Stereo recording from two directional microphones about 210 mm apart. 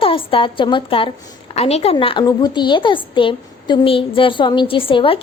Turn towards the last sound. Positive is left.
turn(degrees=25)  # may be behind; listen again after turning